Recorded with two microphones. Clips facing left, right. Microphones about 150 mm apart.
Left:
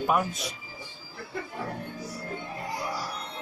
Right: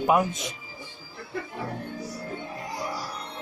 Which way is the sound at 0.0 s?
20° right (ahead or behind).